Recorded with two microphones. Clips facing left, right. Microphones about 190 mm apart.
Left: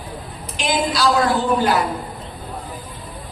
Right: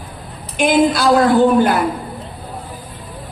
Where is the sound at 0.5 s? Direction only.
55° right (ahead or behind).